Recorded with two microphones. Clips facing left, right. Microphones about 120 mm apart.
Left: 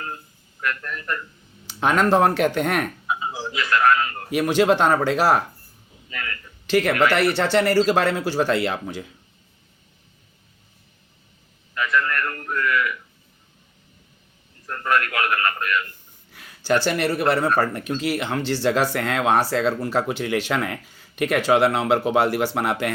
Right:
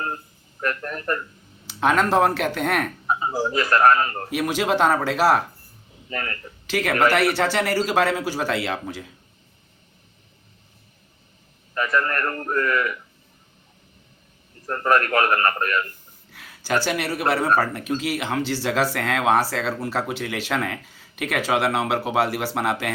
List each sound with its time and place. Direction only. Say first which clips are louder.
0.6 s a man's voice: right 2 dB; 35° right (ahead or behind)
1.6 s speech: even; centre (ahead or behind)
3.1 s a man's voice: right 4 dB; 40° right (ahead or behind)
4.3 s speech: left 6 dB; 5° right (ahead or behind)
6.1 s a man's voice: right 3 dB; 35° right (ahead or behind)
6.7 s speech: left 1 dB; centre (ahead or behind)
11.7 s a man's voice: even; 35° right (ahead or behind)
14.7 s a man's voice: right 3 dB; 35° right (ahead or behind)
16.3 s speech: left 3 dB; centre (ahead or behind)